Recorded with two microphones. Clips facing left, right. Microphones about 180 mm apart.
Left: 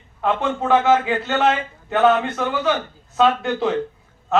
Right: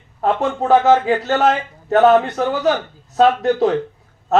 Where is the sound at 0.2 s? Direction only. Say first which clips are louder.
Right 3 dB; 40° right (ahead or behind).